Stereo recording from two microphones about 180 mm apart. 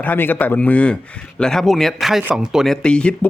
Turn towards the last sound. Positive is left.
turn(degrees=5)  # may be behind; listen again after turning